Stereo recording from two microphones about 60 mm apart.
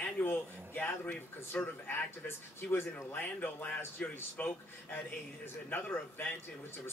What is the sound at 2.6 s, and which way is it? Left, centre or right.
A man's voice, left.